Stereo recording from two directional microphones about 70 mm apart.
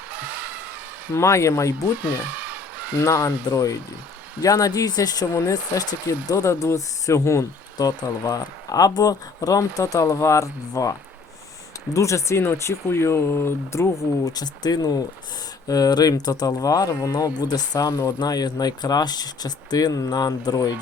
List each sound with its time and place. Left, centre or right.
1.1 s speech: left
2.0 s a sound: right
3.0 s speech: left
5.3 s speech: left
7.8 s speech: left
11.9 s speech: left
14.3 s speech: left
17.7 s speech: left
18.2 s speech: left